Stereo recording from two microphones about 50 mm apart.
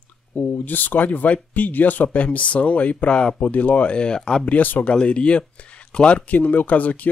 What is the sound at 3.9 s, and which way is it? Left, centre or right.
Speech, centre.